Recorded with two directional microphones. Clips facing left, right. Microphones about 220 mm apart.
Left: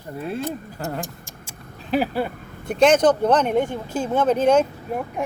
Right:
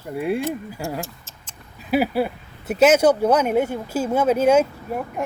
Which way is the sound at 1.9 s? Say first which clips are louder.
Right 2 dB; 10° right (ahead or behind).